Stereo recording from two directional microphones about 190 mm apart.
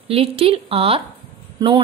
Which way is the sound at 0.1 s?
30° right (ahead or behind).